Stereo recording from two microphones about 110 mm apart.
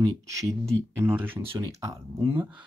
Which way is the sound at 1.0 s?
20° right (ahead or behind).